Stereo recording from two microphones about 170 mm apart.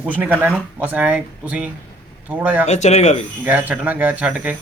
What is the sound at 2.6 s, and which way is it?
Speech, 40° left (ahead or behind).